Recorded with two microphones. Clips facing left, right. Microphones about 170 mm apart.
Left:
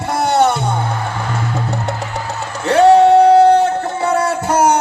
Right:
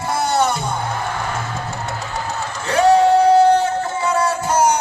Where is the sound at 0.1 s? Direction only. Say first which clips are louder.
Left 5 dB; 60° left (ahead or behind).